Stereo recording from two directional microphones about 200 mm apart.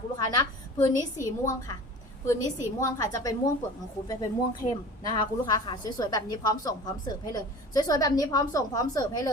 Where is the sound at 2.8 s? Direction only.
15° left (ahead or behind).